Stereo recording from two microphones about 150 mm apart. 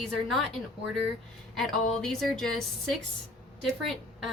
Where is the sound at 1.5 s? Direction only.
Centre (ahead or behind).